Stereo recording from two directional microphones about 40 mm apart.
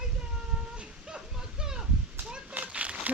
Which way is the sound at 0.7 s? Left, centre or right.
Right.